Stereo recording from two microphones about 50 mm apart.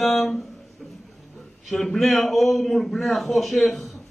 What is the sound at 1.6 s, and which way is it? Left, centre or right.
A man's voice, centre.